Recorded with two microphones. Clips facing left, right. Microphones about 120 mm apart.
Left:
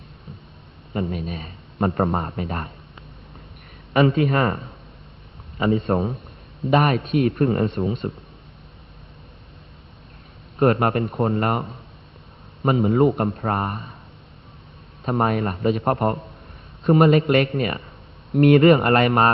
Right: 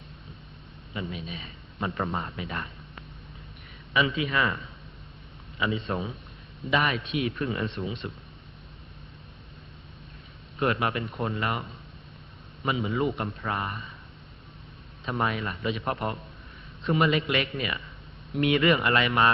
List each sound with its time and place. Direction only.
0.9 s speech: 50° left (ahead or behind)
3.9 s speech: 50° left (ahead or behind)
10.6 s speech: 45° left (ahead or behind)
15.0 s speech: 45° left (ahead or behind)